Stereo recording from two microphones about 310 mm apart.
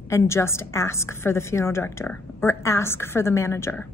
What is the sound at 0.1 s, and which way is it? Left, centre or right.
A woman's voice, centre.